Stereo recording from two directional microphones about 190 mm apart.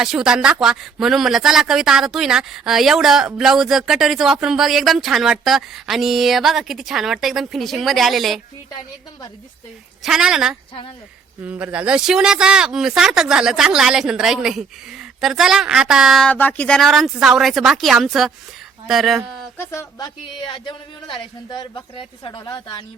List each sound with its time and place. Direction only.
0.0 s speech: 5° right (ahead or behind)
10.0 s speech: 5° right (ahead or behind)
19.5 s speech: 15° left (ahead or behind)
20.5 s speech: 25° left (ahead or behind)